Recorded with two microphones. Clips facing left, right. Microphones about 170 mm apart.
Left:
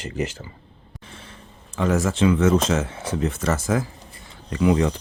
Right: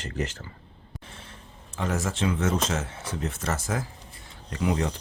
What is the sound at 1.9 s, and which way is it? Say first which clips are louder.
Speech: left 8 dB; 90° left.